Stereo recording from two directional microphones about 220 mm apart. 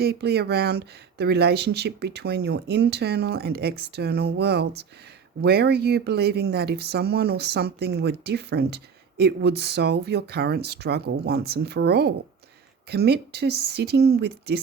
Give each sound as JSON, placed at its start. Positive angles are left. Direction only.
{"t": 0.0, "sound": "speech", "side_deg": -45}